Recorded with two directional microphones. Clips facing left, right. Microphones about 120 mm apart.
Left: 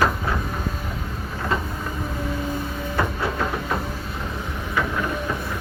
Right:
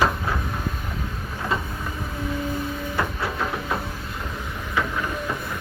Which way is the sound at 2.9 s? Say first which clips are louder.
Left 4 dB; centre (ahead or behind).